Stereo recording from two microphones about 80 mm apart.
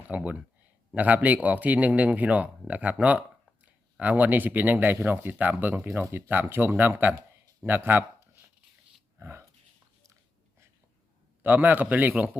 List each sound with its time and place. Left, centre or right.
0.1 s speech: centre
9.1 s pig: right
11.4 s speech: right